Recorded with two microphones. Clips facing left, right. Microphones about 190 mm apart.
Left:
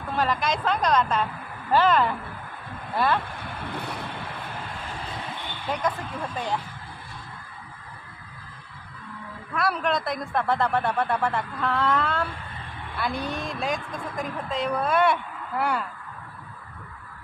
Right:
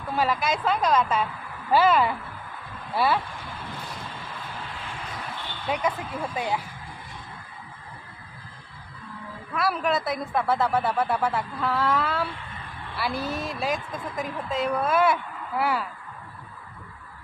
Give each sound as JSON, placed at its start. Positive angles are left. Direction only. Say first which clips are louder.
{"t": 0.2, "sound": "a woman's voice", "louder": "even", "side_deg": -5}
{"t": 3.8, "sound": "vehicle", "louder": "left 4 dB", "side_deg": 65}
{"t": 5.7, "sound": "speech", "louder": "right 1 dB", "side_deg": -10}
{"t": 9.6, "sound": "a woman's voice", "louder": "even", "side_deg": 0}